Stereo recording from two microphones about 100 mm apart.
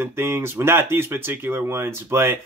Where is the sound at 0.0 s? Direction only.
25° right (ahead or behind).